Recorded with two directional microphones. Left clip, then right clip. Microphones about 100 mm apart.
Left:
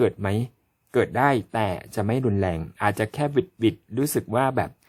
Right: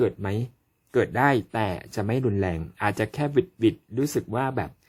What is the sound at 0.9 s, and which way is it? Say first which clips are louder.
Speech: left 1 dB; 30° left (ahead or behind).